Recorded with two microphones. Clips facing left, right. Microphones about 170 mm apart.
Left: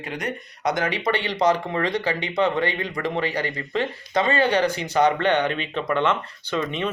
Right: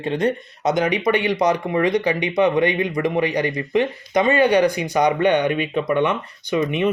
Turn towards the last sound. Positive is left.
turn(degrees=-15)  # may be behind; listen again after turning